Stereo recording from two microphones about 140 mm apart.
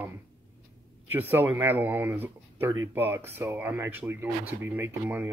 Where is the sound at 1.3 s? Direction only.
15° right (ahead or behind).